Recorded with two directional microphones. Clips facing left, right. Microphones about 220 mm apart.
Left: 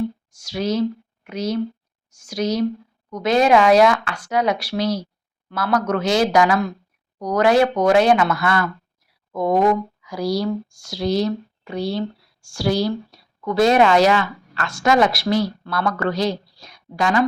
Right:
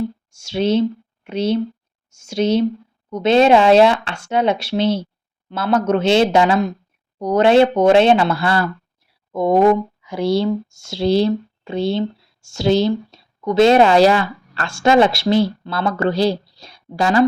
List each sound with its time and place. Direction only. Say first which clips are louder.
0.3 s speech: right 5 dB; 25° right (ahead or behind)